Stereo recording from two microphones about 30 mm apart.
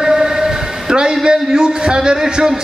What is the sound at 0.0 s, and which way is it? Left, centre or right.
A man's voice, right.